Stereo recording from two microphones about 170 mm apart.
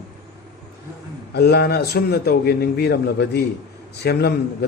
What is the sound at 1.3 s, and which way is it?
A man's voice, 75° left (ahead or behind).